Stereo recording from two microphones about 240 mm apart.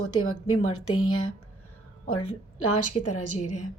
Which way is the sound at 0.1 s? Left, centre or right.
Left.